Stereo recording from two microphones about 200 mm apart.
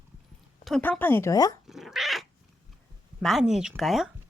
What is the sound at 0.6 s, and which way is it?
Speech, 5° left (ahead or behind).